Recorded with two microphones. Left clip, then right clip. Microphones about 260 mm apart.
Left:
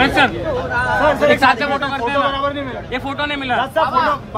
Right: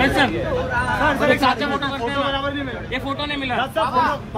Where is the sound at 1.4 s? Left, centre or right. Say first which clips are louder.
Left 5 dB; left.